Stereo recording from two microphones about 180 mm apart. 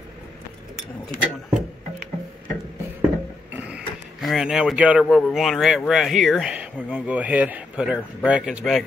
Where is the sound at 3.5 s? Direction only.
5° right (ahead or behind).